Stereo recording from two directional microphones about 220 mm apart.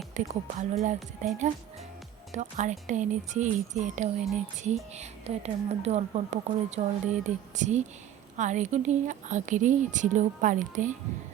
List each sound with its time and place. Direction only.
0.2 s a woman's voice: 35° right (ahead or behind)